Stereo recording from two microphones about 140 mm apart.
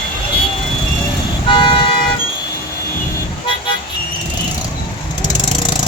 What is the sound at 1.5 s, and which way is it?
Vehicle, 35° left (ahead or behind).